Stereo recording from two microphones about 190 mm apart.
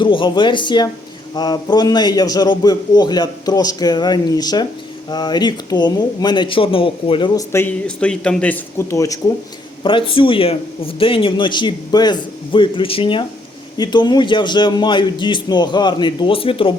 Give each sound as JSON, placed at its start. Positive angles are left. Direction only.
{"t": 0.0, "sound": "speech", "side_deg": 25}
{"t": 9.8, "sound": "speech", "side_deg": 25}